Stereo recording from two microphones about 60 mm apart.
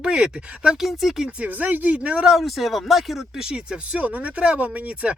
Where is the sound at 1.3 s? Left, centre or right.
Right.